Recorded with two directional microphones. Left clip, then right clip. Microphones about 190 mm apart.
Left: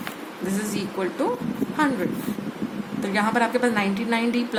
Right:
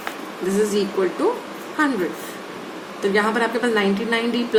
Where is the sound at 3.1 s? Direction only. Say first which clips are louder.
Right 1 dB; 40° left (ahead or behind).